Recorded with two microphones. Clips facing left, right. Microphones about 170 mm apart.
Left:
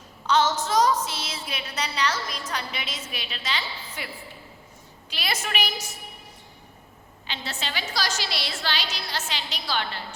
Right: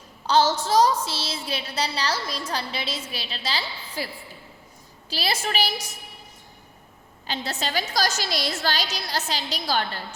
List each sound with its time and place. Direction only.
0.3 s a woman's voice: 30° right (ahead or behind)
7.3 s a woman's voice: 40° right (ahead or behind)